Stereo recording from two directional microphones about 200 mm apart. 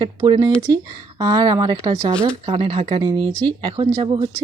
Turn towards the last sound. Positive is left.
turn(degrees=-25)  # may be behind; listen again after turning